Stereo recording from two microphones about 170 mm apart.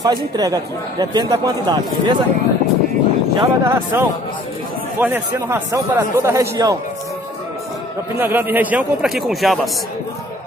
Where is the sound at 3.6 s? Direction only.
15° right (ahead or behind).